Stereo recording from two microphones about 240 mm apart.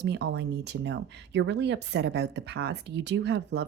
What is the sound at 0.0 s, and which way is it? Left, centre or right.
Speech, right.